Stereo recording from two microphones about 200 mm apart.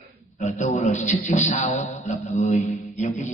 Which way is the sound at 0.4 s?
35° left (ahead or behind).